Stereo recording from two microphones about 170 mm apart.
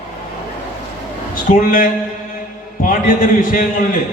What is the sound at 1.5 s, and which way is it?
A man's voice, 50° left (ahead or behind).